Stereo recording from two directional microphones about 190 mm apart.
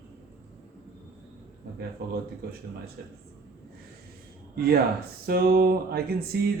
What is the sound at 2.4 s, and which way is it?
Speech, 55° right (ahead or behind).